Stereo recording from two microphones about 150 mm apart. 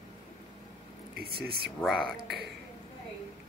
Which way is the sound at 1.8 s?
5° left (ahead or behind).